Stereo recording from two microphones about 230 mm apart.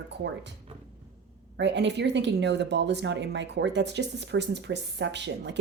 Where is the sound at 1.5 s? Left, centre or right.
Right.